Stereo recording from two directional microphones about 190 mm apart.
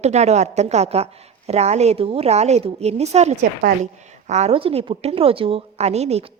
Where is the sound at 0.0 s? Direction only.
35° right (ahead or behind).